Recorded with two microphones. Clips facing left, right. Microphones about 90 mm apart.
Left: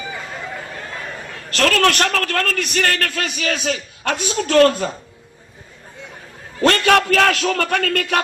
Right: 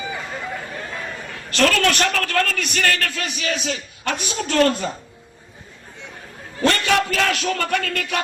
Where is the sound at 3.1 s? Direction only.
65° left (ahead or behind).